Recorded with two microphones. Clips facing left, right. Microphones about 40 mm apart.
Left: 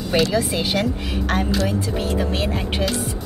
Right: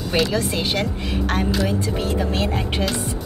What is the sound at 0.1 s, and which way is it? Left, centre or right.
Speech, centre.